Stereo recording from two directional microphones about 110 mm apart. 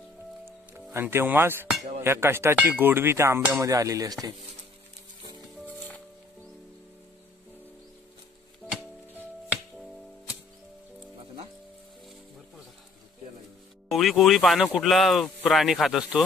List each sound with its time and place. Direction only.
0.9 s speech: 20° right (ahead or behind)
3.6 s a sound: 30° right (ahead or behind)
5.7 s music: 15° left (ahead or behind)
13.8 s speech: centre (ahead or behind)